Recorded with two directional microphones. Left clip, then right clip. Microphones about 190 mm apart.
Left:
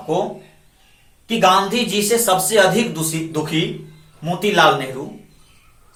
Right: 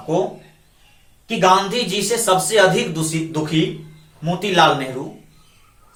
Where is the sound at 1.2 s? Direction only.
15° right (ahead or behind).